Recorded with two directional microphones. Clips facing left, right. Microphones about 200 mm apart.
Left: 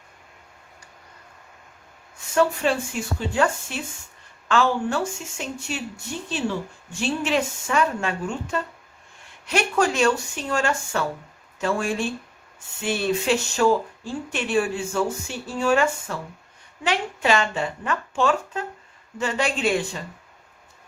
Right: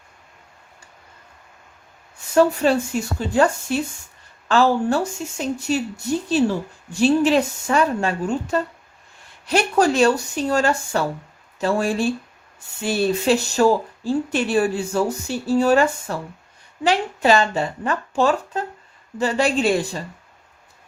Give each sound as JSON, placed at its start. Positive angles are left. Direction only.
{"t": 2.3, "sound": "speech", "side_deg": -40}
{"t": 7.0, "sound": "speech", "side_deg": -35}